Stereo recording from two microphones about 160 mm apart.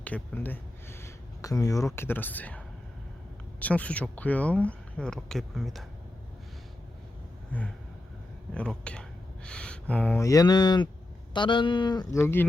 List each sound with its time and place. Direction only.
0.0 s a sound: 10° left (ahead or behind)
2.0 s speech: 10° left (ahead or behind)
8.5 s speech: 5° left (ahead or behind); by 12.2 s 25° left (ahead or behind)
12.2 s speech: 15° left (ahead or behind)